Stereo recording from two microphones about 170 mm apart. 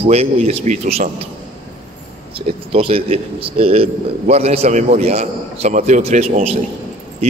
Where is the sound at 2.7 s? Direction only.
35° right (ahead or behind).